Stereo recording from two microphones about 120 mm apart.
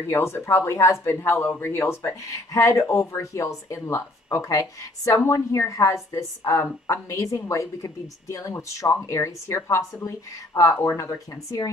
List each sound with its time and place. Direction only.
0.0 s speech: 20° left (ahead or behind)